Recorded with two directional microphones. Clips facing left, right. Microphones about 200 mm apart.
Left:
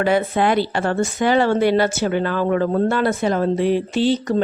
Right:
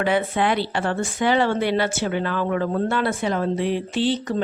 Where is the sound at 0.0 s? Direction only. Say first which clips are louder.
Left 3 dB; 40° left (ahead or behind).